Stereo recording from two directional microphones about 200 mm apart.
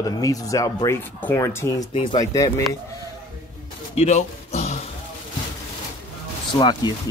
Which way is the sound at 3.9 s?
35° left (ahead or behind).